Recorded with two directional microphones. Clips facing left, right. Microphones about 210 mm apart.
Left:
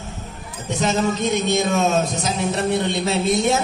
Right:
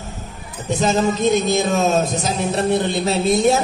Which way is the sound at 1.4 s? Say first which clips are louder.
Right 1 dB; 35° right (ahead or behind).